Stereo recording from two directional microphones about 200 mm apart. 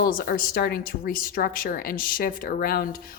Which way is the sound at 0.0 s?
45° left (ahead or behind).